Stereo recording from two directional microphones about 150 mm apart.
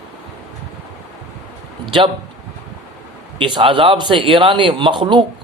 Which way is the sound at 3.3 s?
35° right (ahead or behind).